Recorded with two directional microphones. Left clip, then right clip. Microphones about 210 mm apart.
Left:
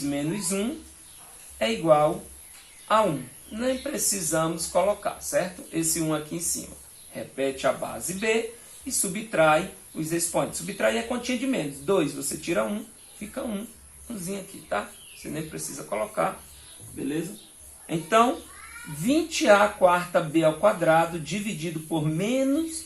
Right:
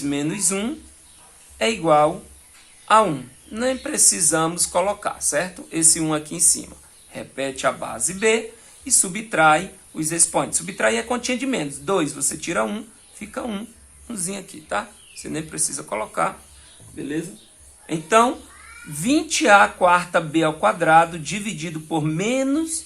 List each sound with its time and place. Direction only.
0.1 s speech: 55° right (ahead or behind)
17.8 s speech: 50° right (ahead or behind)